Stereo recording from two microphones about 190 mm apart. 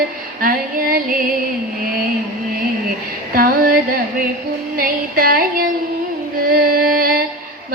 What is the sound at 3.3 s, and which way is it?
Music, 50° right (ahead or behind).